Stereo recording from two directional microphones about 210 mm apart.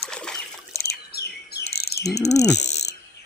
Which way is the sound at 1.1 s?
50° left (ahead or behind).